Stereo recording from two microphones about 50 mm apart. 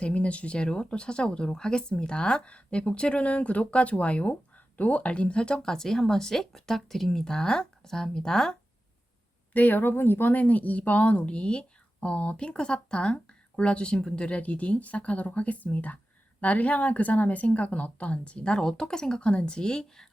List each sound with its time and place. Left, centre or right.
0.0 s speech: left
9.5 s speech: left; by 20.1 s centre